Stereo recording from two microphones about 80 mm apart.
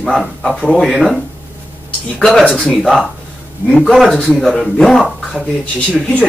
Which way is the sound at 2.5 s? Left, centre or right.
Centre.